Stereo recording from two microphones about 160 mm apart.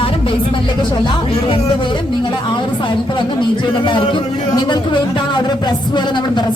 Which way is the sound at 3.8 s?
30° left (ahead or behind).